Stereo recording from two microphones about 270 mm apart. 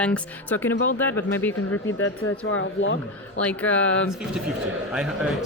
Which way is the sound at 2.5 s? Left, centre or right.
Left.